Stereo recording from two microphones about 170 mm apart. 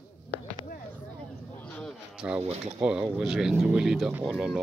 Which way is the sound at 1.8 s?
Centre (ahead or behind).